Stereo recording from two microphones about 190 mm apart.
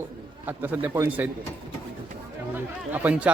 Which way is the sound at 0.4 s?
10° right (ahead or behind).